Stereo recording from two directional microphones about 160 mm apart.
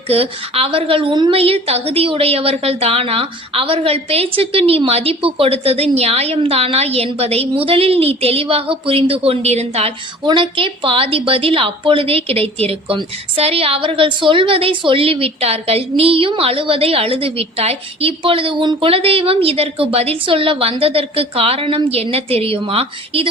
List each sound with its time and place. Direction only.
0.1 s a woman's voice: 35° right (ahead or behind)